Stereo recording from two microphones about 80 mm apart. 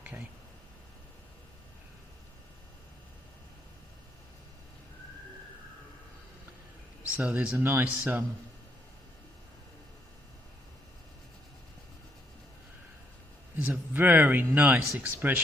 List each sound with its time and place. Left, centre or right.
0.0 s a sound: right
7.2 s speech: centre
13.6 s speech: right